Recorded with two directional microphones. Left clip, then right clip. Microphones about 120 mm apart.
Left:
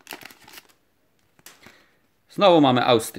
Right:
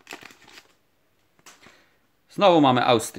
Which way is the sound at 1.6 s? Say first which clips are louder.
Left 2 dB; 10° left (ahead or behind).